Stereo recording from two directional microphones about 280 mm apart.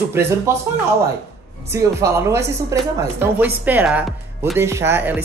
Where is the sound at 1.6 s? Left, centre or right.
Centre.